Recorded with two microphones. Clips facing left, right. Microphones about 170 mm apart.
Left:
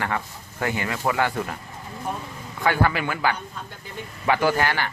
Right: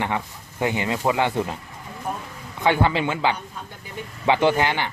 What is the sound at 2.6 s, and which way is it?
Speech, 20° right (ahead or behind).